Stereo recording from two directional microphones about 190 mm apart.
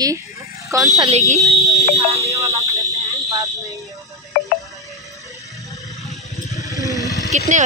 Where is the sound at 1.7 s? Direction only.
15° left (ahead or behind).